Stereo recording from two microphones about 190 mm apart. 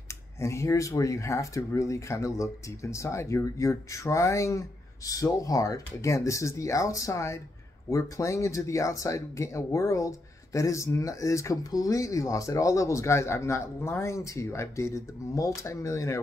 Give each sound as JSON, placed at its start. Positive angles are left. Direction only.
{"t": 0.1, "sound": "speech", "side_deg": 15}